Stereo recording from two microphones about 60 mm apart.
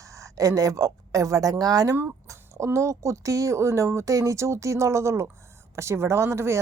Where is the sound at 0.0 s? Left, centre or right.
Right.